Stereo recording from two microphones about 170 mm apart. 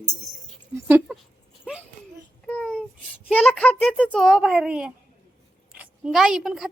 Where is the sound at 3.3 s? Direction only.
10° left (ahead or behind).